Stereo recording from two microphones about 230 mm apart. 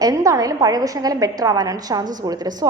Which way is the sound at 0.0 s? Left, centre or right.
Centre.